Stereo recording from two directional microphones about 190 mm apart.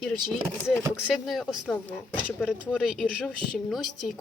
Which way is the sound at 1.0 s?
5° left (ahead or behind).